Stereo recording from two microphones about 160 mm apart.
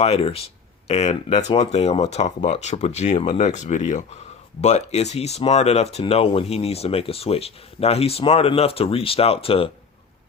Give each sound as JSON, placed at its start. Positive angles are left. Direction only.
{"t": 0.0, "sound": "speech", "side_deg": 40}